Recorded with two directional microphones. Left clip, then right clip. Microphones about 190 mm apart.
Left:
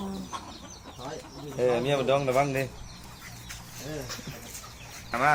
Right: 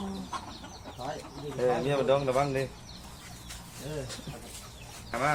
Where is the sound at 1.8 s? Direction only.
50° left (ahead or behind).